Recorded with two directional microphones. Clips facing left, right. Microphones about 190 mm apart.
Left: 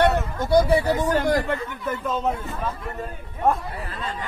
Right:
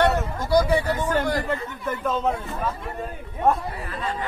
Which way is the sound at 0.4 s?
25° left (ahead or behind).